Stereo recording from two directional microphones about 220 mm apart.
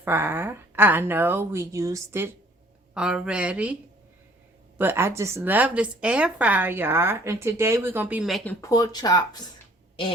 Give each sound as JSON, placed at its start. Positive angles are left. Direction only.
{"t": 0.0, "sound": "a woman's voice", "side_deg": -10}
{"t": 4.8, "sound": "a woman's voice", "side_deg": -10}
{"t": 8.6, "sound": "speech", "side_deg": 15}